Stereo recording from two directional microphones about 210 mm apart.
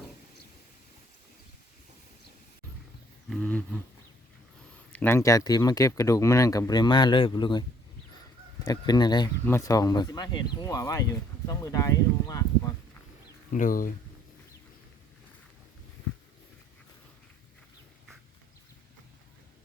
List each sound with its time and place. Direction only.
3.2 s a sound: 5° left (ahead or behind)
4.9 s speech: 10° left (ahead or behind)
8.6 s speech: 20° left (ahead or behind)
13.5 s speech: 40° left (ahead or behind)